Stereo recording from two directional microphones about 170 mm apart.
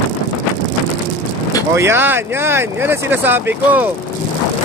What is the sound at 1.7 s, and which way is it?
Speech, 15° right (ahead or behind).